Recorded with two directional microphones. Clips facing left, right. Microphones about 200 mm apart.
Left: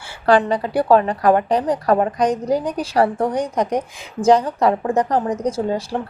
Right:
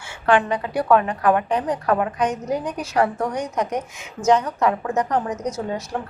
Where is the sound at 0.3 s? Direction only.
35° left (ahead or behind).